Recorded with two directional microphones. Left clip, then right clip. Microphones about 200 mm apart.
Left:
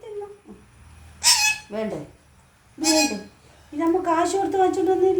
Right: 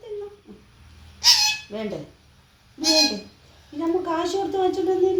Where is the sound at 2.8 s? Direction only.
5° left (ahead or behind).